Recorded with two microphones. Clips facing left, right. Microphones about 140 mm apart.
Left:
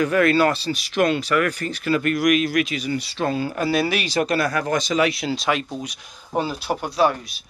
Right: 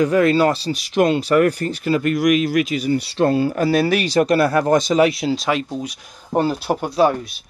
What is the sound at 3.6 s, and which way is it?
Speech, 40° right (ahead or behind).